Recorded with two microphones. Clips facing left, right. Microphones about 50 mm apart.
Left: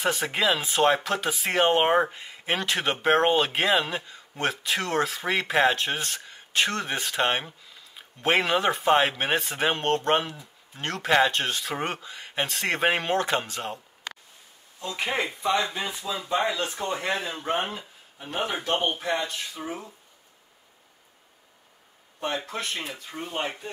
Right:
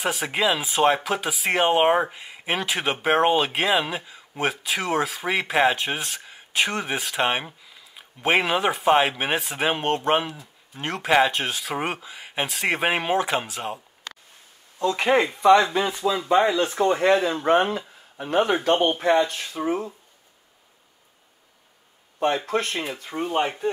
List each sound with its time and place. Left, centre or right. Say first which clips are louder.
0.0 s speech: right 1 dB; centre
14.8 s speech: right 8 dB; right
15.4 s speech: right 11 dB; right
16.3 s speech: right 5 dB; right
16.7 s speech: right 9 dB; right
22.5 s speech: right 7 dB; right
23.1 s speech: right 9 dB; right